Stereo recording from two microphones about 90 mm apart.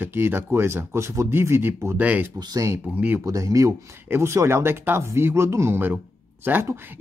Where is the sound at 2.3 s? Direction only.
50° right (ahead or behind).